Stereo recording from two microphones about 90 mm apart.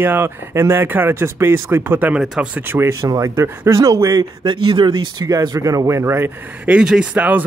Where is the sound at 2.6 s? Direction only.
30° right (ahead or behind).